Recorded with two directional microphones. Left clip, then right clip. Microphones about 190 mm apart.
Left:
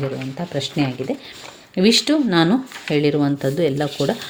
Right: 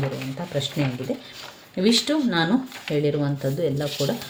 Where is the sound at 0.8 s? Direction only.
50° left (ahead or behind).